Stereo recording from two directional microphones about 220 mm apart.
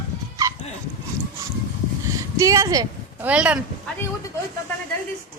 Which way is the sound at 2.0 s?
15° right (ahead or behind).